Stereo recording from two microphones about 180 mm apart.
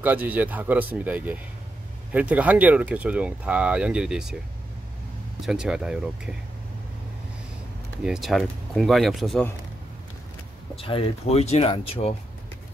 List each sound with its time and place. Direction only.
0.0 s speech: 10° right (ahead or behind)
5.4 s speech: 5° right (ahead or behind)
8.0 s speech: centre (ahead or behind)
10.8 s speech: 30° left (ahead or behind)